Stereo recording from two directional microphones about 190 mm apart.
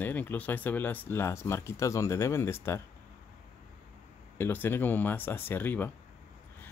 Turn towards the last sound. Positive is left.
turn(degrees=10)  # may be behind; listen again after turning